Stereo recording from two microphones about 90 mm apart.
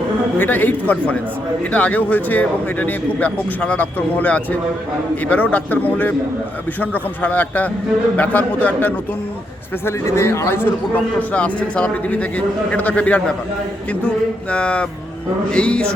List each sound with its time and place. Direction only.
0.3 s speech: 20° left (ahead or behind)
9.8 s speech: 35° left (ahead or behind); by 13.3 s 15° left (ahead or behind)
14.5 s speech: 15° left (ahead or behind)